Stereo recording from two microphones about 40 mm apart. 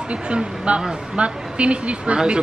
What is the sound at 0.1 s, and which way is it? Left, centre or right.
A man's voice, right.